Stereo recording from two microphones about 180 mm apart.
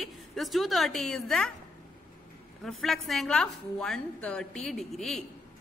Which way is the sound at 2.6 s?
Centre (ahead or behind).